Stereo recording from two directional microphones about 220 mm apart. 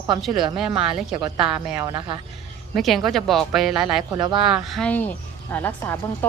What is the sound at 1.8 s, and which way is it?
Speech, 20° right (ahead or behind).